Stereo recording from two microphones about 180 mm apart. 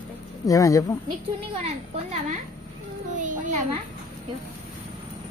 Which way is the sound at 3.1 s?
45° right (ahead or behind).